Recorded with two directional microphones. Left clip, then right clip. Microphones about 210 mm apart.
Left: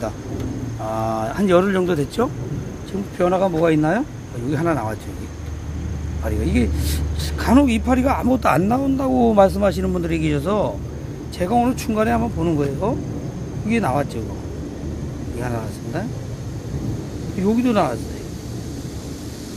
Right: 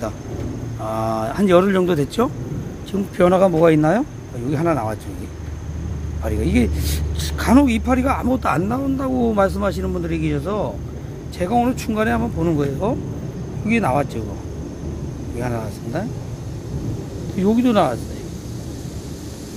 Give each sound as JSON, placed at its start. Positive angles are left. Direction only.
{"t": 0.8, "sound": "speech", "side_deg": -10}
{"t": 3.2, "sound": "speech", "side_deg": -30}
{"t": 6.2, "sound": "speech", "side_deg": -15}
{"t": 11.3, "sound": "speech", "side_deg": -5}
{"t": 15.4, "sound": "speech", "side_deg": -10}
{"t": 17.4, "sound": "speech", "side_deg": -15}